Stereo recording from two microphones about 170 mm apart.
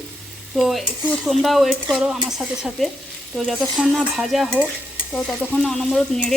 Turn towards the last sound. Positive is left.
turn(degrees=5)  # may be behind; listen again after turning